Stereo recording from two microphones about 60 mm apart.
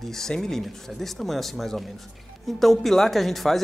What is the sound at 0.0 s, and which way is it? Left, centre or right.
Speech, centre.